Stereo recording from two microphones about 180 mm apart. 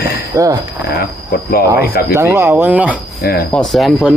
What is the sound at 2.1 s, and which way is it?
Speech, 10° right (ahead or behind).